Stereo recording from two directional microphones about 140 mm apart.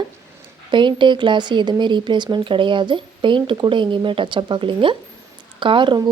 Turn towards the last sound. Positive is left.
turn(degrees=-35)  # may be behind; listen again after turning